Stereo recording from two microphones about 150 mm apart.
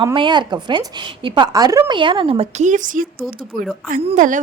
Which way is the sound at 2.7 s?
60° right (ahead or behind).